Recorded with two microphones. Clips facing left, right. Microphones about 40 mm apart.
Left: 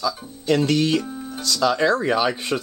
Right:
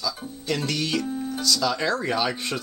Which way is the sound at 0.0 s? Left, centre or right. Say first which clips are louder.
Left 5 dB; centre.